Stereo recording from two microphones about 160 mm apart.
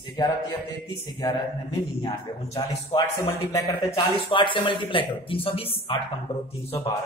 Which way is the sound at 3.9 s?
30° left (ahead or behind).